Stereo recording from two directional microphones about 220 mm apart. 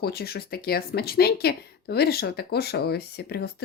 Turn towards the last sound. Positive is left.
turn(degrees=45)  # may be behind; listen again after turning